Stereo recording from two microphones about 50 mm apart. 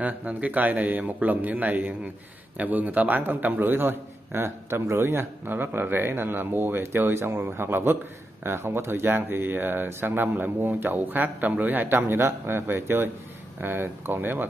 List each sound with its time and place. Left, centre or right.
0.0 s a man's voice: right
7.2 s speech: right